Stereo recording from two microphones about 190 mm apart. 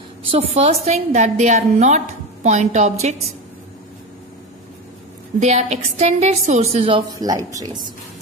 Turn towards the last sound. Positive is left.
turn(degrees=-20)  # may be behind; listen again after turning